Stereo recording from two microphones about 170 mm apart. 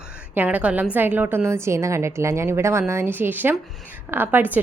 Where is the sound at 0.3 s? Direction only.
10° right (ahead or behind).